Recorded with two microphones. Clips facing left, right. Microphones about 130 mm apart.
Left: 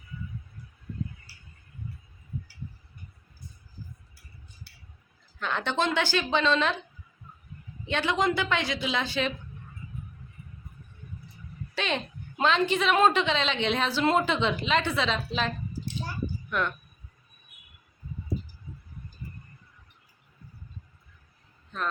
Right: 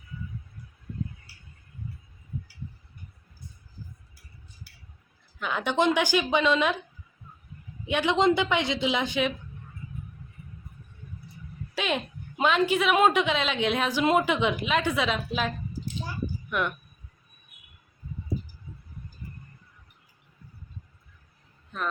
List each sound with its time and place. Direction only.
5.4 s a woman's voice: 10° right (ahead or behind)
7.9 s a man's voice: 15° right (ahead or behind)
8.1 s speech: 25° right (ahead or behind)
11.7 s a woman's voice: 5° right (ahead or behind)
21.7 s a sound: 10° right (ahead or behind)